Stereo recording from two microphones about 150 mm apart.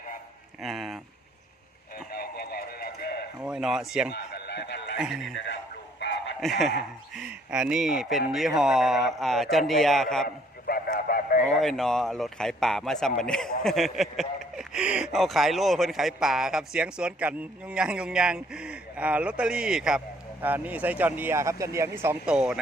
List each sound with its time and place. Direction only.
0.6 s speech: centre (ahead or behind)
2.0 s radio: 90° left
3.4 s speech: 5° right (ahead or behind)
6.4 s speech: centre (ahead or behind)
10.2 s a sound: 90° left; by 11.4 s 70° left (ahead or behind)
11.6 s speech: 5° left (ahead or behind)